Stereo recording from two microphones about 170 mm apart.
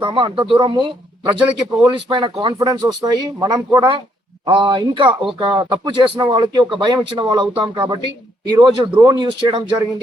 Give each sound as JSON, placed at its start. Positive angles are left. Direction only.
{"t": 0.0, "sound": "speech", "side_deg": -30}